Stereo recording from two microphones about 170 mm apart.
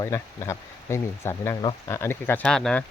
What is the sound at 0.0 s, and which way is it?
Speech, 20° left (ahead or behind).